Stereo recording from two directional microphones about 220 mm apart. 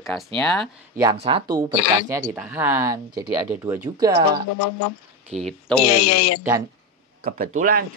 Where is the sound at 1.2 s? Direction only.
25° right (ahead or behind).